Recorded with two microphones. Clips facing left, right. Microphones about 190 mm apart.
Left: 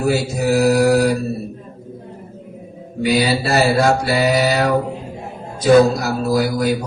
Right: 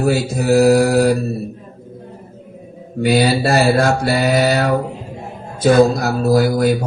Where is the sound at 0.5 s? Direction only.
50° right (ahead or behind).